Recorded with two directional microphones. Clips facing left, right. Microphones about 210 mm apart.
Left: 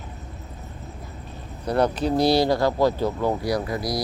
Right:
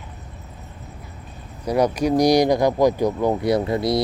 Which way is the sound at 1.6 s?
10° right (ahead or behind).